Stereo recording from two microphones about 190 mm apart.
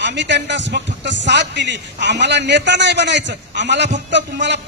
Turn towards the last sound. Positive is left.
turn(degrees=-70)  # may be behind; listen again after turning